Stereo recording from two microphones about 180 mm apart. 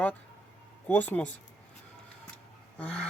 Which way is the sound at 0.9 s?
10° left (ahead or behind).